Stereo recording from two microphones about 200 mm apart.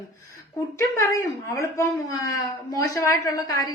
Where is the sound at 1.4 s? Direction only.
15° left (ahead or behind).